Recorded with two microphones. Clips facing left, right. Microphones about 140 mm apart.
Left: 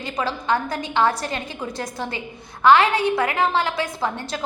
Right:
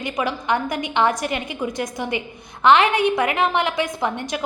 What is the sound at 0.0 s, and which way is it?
A woman's voice, 15° right (ahead or behind).